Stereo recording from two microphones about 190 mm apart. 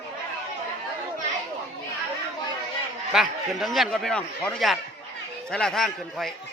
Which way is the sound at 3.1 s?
Centre (ahead or behind).